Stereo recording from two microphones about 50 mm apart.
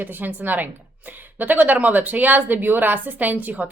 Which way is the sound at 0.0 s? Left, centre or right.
Right.